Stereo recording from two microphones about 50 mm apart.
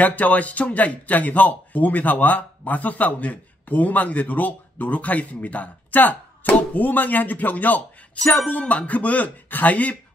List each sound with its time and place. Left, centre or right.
0.0 s a man's voice: left